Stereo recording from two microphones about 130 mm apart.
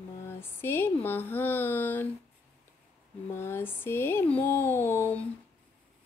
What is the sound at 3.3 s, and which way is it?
Speech, 20° left (ahead or behind).